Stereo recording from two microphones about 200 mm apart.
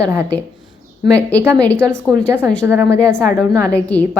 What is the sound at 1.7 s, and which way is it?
Speech, 15° right (ahead or behind).